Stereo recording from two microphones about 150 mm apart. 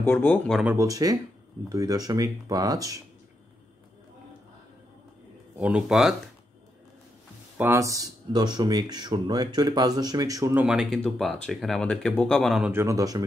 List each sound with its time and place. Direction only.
0.0 s speech: 15° left (ahead or behind)
0.7 s speech: 20° right (ahead or behind)
5.6 s speech: 5° right (ahead or behind)
7.5 s speech: 15° right (ahead or behind)
10.5 s speech: 5° right (ahead or behind)
11.0 s speech: 5° left (ahead or behind)
12.7 s speech: 20° right (ahead or behind)